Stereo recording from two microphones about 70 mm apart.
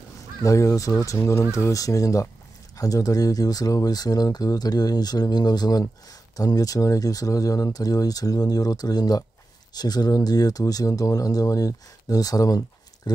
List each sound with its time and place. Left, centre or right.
0.4 s speech: left
1.6 s speech: left
6.3 s speech: left